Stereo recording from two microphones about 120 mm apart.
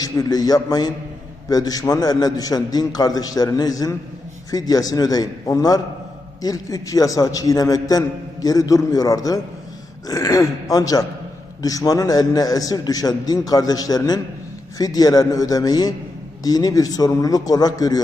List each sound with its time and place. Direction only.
0.0 s a man's voice: 30° left (ahead or behind)